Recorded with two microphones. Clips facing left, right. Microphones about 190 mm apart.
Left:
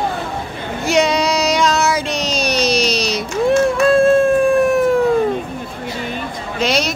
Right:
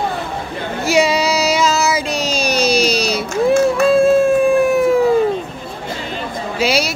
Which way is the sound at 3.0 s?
5° right (ahead or behind).